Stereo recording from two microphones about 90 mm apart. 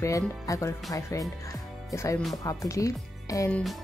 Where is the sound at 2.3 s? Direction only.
40° left (ahead or behind).